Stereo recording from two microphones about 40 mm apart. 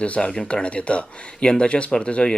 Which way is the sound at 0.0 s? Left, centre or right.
Left.